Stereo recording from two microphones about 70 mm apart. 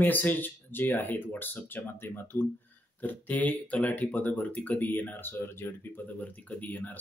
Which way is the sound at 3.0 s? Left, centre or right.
Left.